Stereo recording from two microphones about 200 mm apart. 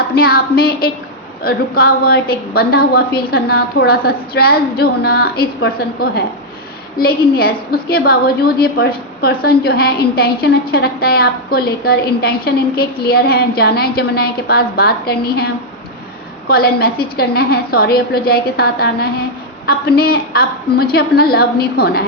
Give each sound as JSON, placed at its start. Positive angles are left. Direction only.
{"t": 0.1, "sound": "a woman's voice", "side_deg": 50}